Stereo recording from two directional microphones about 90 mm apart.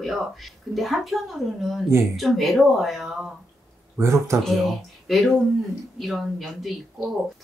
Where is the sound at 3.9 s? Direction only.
30° right (ahead or behind).